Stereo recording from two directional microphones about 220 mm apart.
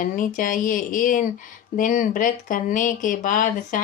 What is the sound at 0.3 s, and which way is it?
Speech, 40° left (ahead or behind).